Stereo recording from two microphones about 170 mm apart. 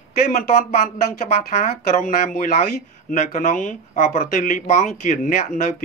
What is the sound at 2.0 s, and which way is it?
Speech, 50° left (ahead or behind).